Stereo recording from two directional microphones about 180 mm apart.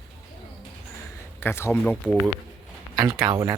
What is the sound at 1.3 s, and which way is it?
Speech, 15° left (ahead or behind).